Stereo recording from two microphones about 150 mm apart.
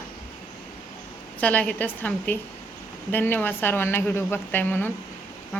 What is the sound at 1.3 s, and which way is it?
A woman's voice, 10° left (ahead or behind).